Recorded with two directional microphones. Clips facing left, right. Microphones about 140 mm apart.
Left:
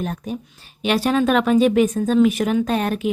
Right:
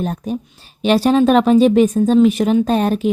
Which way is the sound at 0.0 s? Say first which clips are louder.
Right 5 dB; 35° right (ahead or behind).